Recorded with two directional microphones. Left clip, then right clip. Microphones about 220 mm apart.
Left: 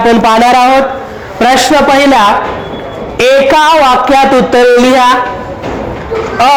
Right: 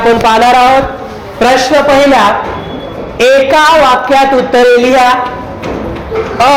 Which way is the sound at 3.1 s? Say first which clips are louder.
Even; 45° left (ahead or behind).